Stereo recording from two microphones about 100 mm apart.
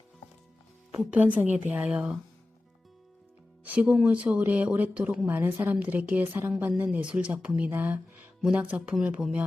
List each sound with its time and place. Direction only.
0.9 s speech: 15° right (ahead or behind)
3.6 s speech: 15° right (ahead or behind)